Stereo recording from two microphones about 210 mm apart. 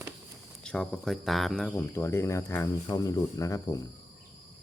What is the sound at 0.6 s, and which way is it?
Speech, 5° left (ahead or behind).